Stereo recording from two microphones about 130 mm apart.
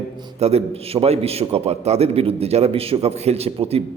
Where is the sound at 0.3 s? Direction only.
55° right (ahead or behind).